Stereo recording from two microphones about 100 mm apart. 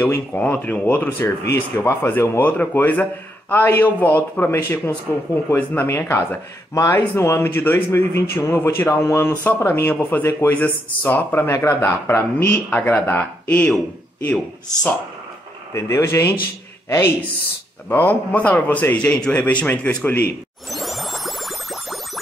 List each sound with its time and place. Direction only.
0.0 s a man's voice: 15° left (ahead or behind)
6.7 s speech: 30° left (ahead or behind)
12.6 s a man's voice: 15° left (ahead or behind)
15.7 s speech: 30° left (ahead or behind)
17.8 s a man's voice: 20° left (ahead or behind)
20.7 s music: centre (ahead or behind)